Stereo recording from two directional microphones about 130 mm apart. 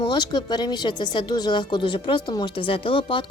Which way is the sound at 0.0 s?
35° left (ahead or behind).